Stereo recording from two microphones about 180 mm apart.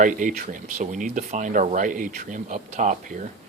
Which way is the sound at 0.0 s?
45° right (ahead or behind).